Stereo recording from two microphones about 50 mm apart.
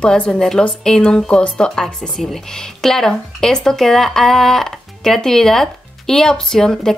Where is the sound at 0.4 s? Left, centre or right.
Centre.